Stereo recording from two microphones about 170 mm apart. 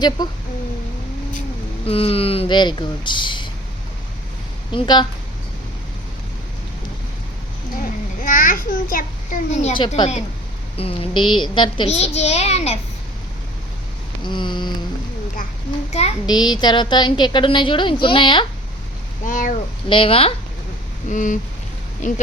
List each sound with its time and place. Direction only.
0.2 s a woman's voice: 25° left (ahead or behind)
1.8 s a woman's voice: 35° left (ahead or behind)
4.7 s a woman's voice: 25° left (ahead or behind)
8.2 s a child's voice: 50° left (ahead or behind)
9.7 s a woman's voice: 30° left (ahead or behind)
14.3 s a woman's voice: 25° left (ahead or behind)
15.9 s a child's voice: 40° left (ahead or behind)
16.2 s a woman's voice: 25° left (ahead or behind)
19.2 s speech: 50° left (ahead or behind)
19.9 s a child's voice: 30° left (ahead or behind)
21.1 s speech: 50° left (ahead or behind)